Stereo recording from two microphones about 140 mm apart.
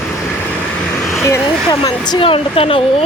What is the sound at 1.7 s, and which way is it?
Speech, 30° left (ahead or behind).